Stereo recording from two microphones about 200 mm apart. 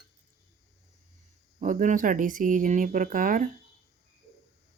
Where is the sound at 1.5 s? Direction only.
40° right (ahead or behind).